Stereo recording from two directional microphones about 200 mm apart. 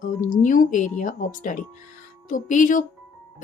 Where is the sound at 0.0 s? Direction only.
40° left (ahead or behind).